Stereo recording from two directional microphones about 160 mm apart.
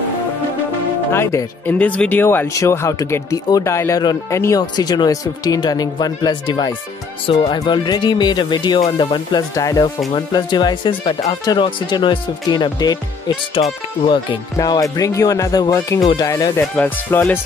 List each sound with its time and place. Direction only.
1.1 s speech: 15° left (ahead or behind)
16.7 s speech: 10° left (ahead or behind)